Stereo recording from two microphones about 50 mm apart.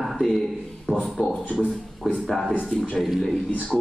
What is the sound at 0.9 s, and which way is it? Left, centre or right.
Speech, right.